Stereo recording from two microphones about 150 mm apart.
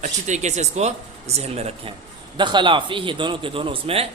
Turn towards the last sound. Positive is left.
turn(degrees=-40)  # may be behind; listen again after turning